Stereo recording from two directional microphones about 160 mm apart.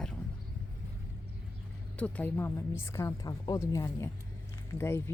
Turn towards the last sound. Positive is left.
turn(degrees=15)  # may be behind; listen again after turning